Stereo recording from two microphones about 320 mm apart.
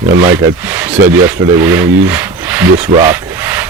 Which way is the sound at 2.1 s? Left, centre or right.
Centre.